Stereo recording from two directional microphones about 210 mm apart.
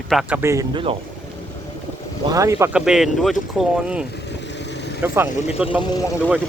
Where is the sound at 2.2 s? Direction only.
15° right (ahead or behind).